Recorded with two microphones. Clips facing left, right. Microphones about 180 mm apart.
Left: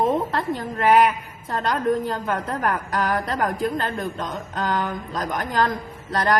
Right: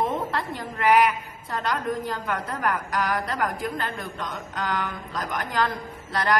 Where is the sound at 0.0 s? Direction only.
45° left (ahead or behind).